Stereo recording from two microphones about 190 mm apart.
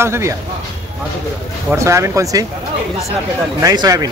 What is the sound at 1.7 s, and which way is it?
Speech, 15° right (ahead or behind).